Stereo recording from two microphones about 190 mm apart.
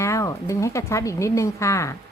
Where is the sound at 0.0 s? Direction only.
15° left (ahead or behind).